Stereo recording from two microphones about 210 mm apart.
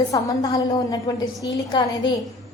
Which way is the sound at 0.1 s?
15° left (ahead or behind).